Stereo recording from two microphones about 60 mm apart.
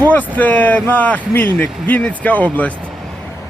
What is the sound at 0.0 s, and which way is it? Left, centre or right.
Speech, left.